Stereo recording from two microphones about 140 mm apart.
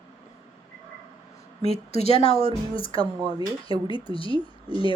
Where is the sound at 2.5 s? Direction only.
40° left (ahead or behind).